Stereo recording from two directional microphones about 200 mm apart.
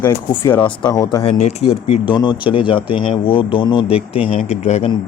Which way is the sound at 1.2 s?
30° left (ahead or behind).